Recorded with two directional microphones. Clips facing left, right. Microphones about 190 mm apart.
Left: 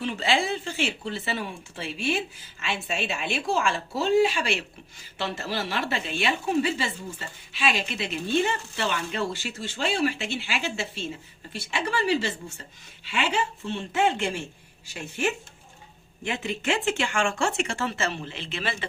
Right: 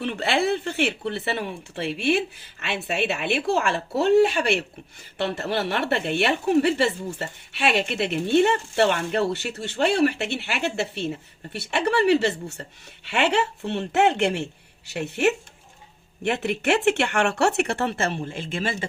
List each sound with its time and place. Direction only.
0.0 s a woman's voice: 60° right (ahead or behind)